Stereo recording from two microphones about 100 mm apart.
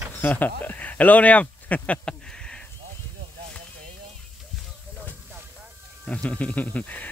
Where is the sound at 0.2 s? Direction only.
15° left (ahead or behind).